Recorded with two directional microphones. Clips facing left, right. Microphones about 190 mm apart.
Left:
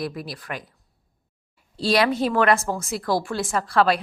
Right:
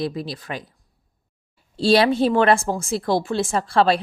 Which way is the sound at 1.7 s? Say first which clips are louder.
Right 4 dB; 30° right (ahead or behind).